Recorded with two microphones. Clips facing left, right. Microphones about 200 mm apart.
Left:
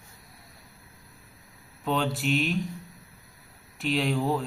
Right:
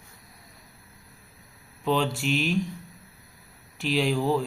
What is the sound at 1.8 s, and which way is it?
Speech, centre (ahead or behind).